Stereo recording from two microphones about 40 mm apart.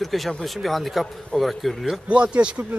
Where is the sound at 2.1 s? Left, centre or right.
Right.